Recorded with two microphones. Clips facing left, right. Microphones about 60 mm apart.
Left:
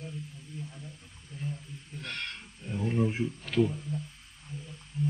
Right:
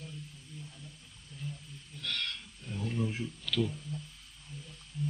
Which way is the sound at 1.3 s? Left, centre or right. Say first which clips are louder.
Left 5 dB; left.